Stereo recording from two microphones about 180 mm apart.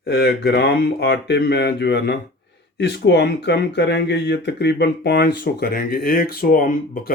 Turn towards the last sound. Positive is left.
turn(degrees=50)  # may be behind; listen again after turning